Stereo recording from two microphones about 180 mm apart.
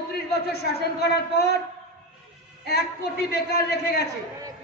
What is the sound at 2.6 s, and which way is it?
A man's voice, 60° left (ahead or behind).